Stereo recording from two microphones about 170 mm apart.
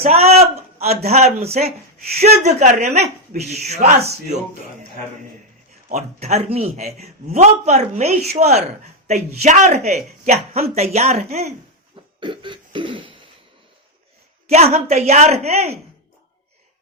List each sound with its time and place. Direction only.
0.0 s a man's voice: 40° right (ahead or behind)
5.9 s a man's voice: 40° right (ahead or behind)
12.2 s cough: 30° right (ahead or behind)
14.4 s a man's voice: 40° right (ahead or behind)